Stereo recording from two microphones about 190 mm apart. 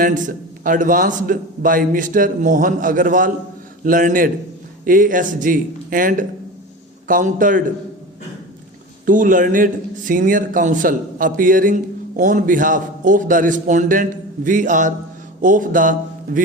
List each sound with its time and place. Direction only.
0.0 s a man's voice: 45° right (ahead or behind)
9.0 s a man's voice: 45° right (ahead or behind)
15.4 s mantra: 45° right (ahead or behind)